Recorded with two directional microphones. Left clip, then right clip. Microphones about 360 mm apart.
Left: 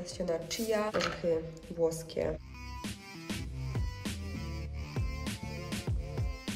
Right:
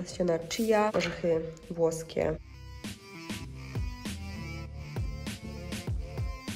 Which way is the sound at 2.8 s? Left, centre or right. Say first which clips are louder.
Right 3 dB; centre.